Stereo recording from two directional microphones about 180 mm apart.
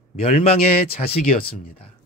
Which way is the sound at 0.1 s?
40° left (ahead or behind).